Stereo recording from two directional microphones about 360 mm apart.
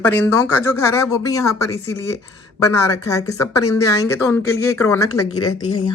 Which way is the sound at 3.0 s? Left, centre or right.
Centre.